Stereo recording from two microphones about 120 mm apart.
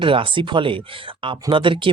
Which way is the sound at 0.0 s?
45° right (ahead or behind).